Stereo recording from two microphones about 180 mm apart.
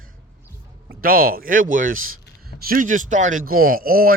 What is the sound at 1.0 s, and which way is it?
A man's voice, 55° right (ahead or behind).